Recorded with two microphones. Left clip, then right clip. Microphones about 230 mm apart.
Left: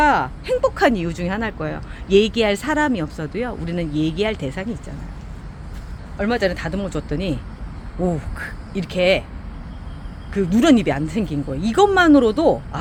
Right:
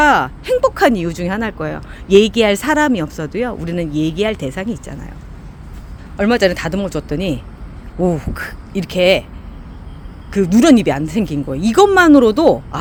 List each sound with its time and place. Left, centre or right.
0.0 s speech: right
6.1 s speech: right
10.3 s speech: right